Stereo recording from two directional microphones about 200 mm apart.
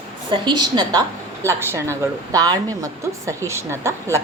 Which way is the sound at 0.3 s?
20° right (ahead or behind).